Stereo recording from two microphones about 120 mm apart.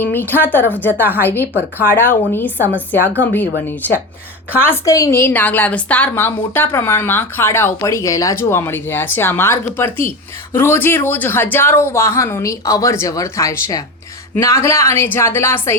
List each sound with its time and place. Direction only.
0.0 s a woman's voice: 15° left (ahead or behind)
4.9 s a woman's voice: 30° left (ahead or behind)